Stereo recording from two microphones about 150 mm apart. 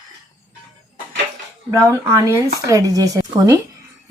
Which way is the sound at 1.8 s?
20° right (ahead or behind).